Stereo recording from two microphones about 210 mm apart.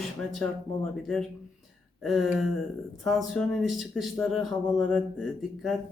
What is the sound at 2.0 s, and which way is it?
Speech, centre (ahead or behind).